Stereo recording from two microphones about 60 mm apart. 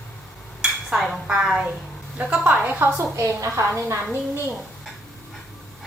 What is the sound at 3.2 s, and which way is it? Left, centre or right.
Speech, right.